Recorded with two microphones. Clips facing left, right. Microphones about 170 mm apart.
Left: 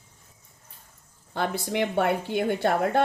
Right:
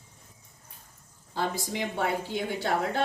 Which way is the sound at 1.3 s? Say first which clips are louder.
Left 4 dB; 65° left (ahead or behind).